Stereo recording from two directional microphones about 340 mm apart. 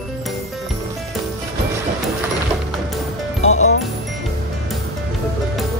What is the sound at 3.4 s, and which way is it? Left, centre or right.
Music, left.